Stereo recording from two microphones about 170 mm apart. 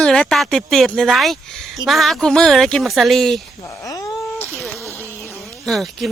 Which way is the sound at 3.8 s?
20° left (ahead or behind).